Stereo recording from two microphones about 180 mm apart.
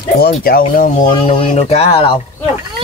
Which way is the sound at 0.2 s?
55° left (ahead or behind).